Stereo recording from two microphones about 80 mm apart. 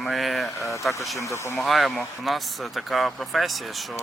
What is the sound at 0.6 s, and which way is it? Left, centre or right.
Speech, left.